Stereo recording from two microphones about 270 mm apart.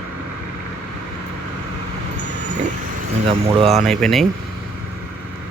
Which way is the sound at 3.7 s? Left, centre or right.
Centre.